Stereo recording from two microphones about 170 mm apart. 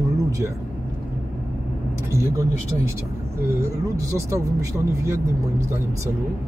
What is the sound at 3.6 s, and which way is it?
Speech, 15° right (ahead or behind).